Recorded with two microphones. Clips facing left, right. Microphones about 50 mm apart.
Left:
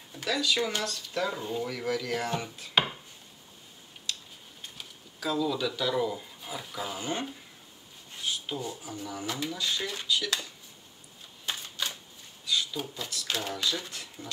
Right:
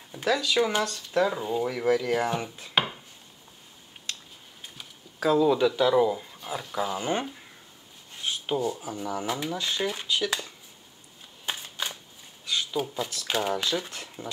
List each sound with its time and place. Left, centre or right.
0.1 s speech: centre
2.7 s wood: centre
5.2 s speech: right
5.8 s speech: centre
7.0 s speech: right
8.2 s a sound: right
8.5 s speech: centre
11.4 s a sound: centre
12.7 s speech: centre